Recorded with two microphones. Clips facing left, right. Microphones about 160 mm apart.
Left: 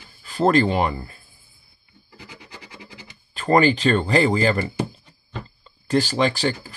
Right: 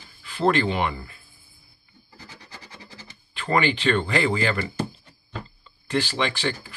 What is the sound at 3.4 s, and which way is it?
Speech, 40° left (ahead or behind).